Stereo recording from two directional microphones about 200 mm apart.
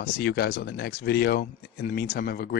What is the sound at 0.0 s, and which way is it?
Speech, 55° left (ahead or behind).